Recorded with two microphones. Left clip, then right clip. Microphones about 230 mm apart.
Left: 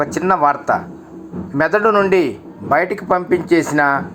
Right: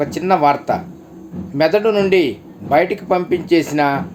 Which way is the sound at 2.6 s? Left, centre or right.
Centre.